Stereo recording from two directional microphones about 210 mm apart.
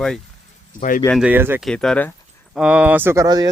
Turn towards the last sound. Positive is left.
turn(degrees=-20)  # may be behind; listen again after turning